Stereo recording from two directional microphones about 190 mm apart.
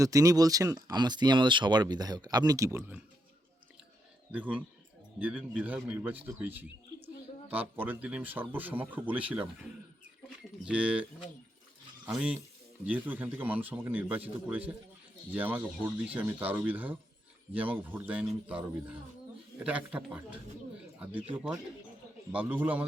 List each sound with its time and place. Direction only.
0.0 s speech: 15° right (ahead or behind)
4.3 s a man's voice: 5° right (ahead or behind)
10.7 s a man's voice: 5° right (ahead or behind)
12.0 s a man's voice: 5° right (ahead or behind)